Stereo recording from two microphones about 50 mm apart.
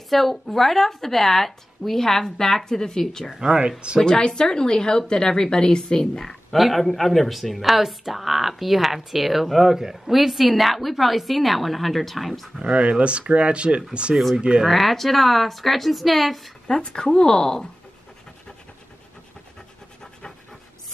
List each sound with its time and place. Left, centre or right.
0.1 s a woman's voice: centre
3.3 s speech: centre
4.0 s a woman's voice: centre
12.5 s speech: right
14.7 s a woman's voice: centre
16.6 s a woman's voice: centre